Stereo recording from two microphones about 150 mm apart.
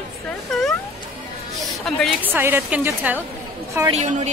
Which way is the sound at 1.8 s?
Centre (ahead or behind).